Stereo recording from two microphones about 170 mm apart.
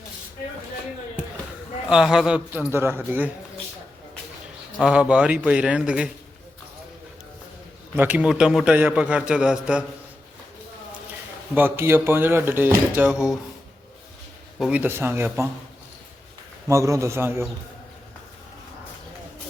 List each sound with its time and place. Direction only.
1.9 s a man's voice: 5° right (ahead or behind)
4.8 s a man's voice: 5° right (ahead or behind)
7.9 s a man's voice: 10° right (ahead or behind)
11.5 s a man's voice: 15° right (ahead or behind)
14.6 s a man's voice: 10° right (ahead or behind)
16.6 s a man's voice: 15° right (ahead or behind)